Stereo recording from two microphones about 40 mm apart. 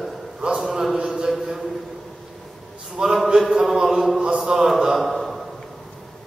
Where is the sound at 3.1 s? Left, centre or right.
Centre.